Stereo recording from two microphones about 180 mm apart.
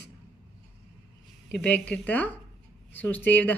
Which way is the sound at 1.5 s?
5° left (ahead or behind).